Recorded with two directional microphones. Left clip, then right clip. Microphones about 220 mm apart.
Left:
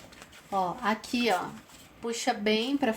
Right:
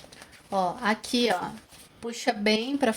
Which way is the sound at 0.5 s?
40° right (ahead or behind).